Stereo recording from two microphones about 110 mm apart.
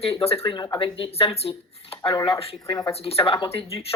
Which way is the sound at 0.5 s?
35° left (ahead or behind).